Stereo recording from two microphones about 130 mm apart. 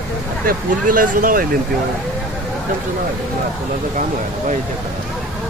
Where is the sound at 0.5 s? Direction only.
90° right.